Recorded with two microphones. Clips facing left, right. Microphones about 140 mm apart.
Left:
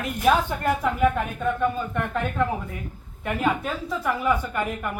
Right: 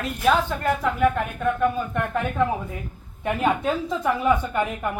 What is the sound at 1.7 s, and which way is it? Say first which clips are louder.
Speech: right 2 dB; 10° right (ahead or behind).